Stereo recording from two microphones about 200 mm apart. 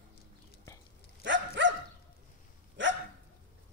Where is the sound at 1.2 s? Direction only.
65° right (ahead or behind).